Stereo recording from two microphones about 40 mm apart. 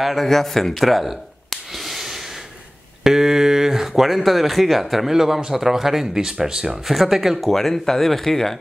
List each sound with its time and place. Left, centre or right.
0.0 s a sound: centre
3.0 s speech: centre
6.9 s speech: centre